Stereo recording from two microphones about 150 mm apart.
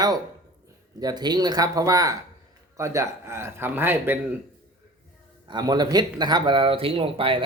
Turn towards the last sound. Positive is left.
turn(degrees=-35)  # may be behind; listen again after turning